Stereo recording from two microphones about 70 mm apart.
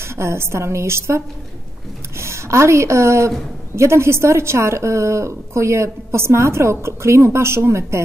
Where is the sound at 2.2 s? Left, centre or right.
Right.